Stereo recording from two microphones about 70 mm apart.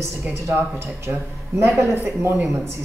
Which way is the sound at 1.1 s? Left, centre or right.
Right.